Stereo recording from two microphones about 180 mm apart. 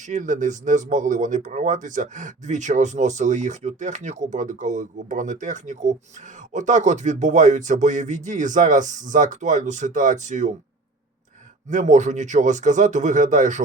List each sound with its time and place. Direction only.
0.0 s speech: 45° right (ahead or behind)
11.7 s speech: 45° right (ahead or behind)